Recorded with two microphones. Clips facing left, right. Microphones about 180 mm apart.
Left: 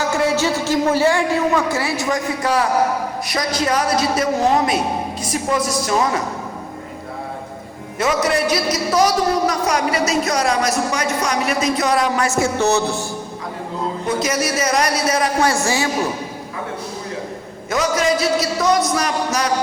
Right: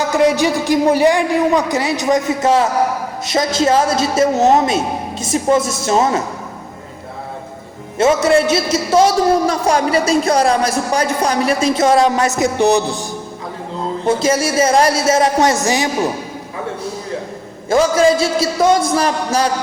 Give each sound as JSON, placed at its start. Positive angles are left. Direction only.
{"t": 0.1, "sound": "a man's voice", "side_deg": -15}
{"t": 7.9, "sound": "a man's voice", "side_deg": -25}
{"t": 14.0, "sound": "a man's voice", "side_deg": -30}
{"t": 17.7, "sound": "a man's voice", "side_deg": -30}